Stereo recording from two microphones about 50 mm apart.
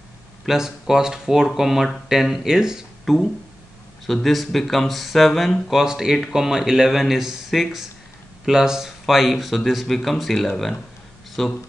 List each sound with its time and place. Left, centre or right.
0.5 s speech: centre